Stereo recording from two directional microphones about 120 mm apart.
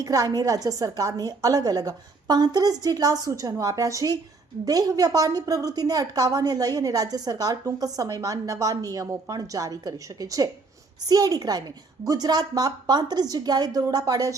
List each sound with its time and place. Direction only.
0.0 s a woman's voice: 30° right (ahead or behind)